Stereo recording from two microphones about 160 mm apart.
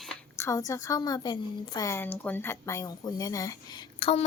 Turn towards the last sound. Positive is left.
turn(degrees=25)  # may be behind; listen again after turning